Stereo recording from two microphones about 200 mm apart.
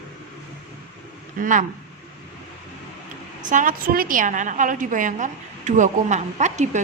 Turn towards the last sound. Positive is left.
turn(degrees=-35)  # may be behind; listen again after turning